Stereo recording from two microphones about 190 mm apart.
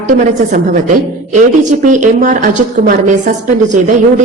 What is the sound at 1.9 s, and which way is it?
A woman's voice, 40° right (ahead or behind).